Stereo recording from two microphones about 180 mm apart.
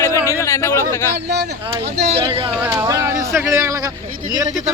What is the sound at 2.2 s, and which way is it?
Speech, 30° right (ahead or behind).